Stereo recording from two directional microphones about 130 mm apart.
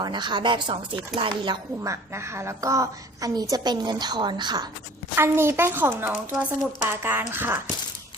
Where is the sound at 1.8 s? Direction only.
20° right (ahead or behind).